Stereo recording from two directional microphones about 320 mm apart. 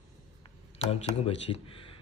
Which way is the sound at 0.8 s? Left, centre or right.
Centre.